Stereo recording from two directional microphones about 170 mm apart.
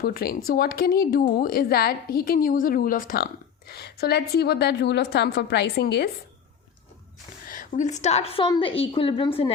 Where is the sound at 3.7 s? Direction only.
70° left (ahead or behind).